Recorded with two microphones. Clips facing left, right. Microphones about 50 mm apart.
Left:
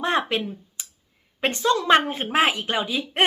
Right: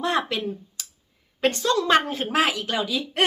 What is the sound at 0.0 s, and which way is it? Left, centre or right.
Speech, left.